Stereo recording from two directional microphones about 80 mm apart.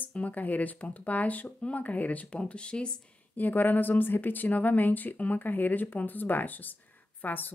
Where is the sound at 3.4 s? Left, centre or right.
Left.